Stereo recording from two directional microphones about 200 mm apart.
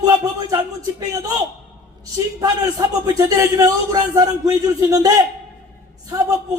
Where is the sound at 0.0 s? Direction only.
20° right (ahead or behind).